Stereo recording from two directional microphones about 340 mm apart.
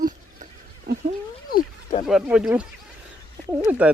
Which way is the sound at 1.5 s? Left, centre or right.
Left.